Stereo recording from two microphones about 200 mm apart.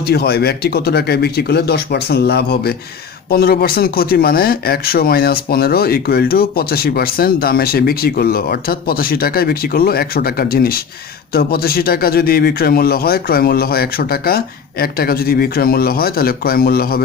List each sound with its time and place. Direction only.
0.0 s speech: 50° left (ahead or behind)